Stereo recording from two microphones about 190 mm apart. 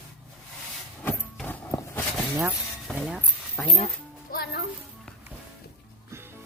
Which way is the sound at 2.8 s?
Centre (ahead or behind).